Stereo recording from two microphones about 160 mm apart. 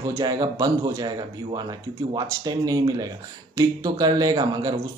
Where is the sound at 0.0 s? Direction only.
25° right (ahead or behind).